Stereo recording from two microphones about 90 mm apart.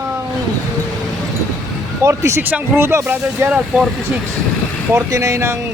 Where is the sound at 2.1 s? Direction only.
35° right (ahead or behind).